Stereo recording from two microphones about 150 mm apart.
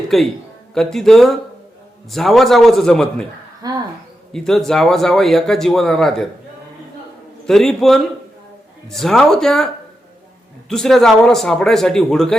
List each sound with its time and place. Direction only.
0.1 s speech: centre (ahead or behind)
3.6 s speech: 25° right (ahead or behind)
4.3 s speech: 5° left (ahead or behind)
7.4 s speech: 5° left (ahead or behind)
10.7 s speech: 5° left (ahead or behind)